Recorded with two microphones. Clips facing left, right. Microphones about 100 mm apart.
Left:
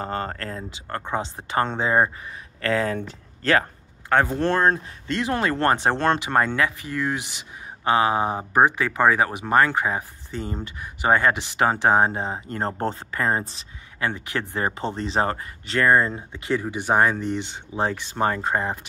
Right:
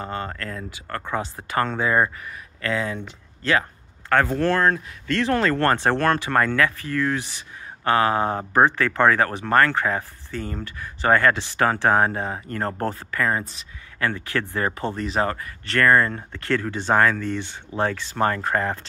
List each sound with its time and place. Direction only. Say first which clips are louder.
0.0 s speech: left 1 dB; 40° left (ahead or behind)
2.7 s speech: left 3 dB; 45° left (ahead or behind)
4.1 s speech: right 1 dB; 20° left (ahead or behind)